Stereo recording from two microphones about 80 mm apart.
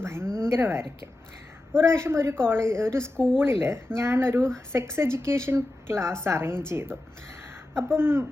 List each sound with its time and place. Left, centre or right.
0.0 s a sound: right
0.4 s speech: right
7.9 s a woman's voice: right